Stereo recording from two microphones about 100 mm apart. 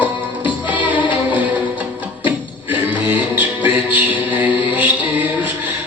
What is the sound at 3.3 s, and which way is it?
Music, 15° right (ahead or behind).